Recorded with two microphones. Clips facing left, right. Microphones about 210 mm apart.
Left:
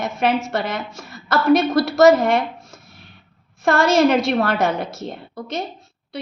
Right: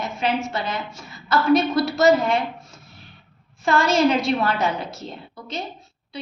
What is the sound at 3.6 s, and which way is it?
A woman's voice, 60° left (ahead or behind).